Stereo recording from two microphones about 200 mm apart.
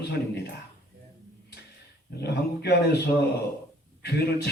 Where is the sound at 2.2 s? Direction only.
55° left (ahead or behind).